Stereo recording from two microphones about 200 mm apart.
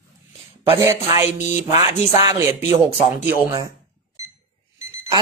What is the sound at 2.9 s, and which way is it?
Speech, 10° right (ahead or behind).